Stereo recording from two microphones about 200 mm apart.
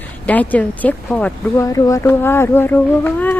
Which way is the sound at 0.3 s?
10° left (ahead or behind).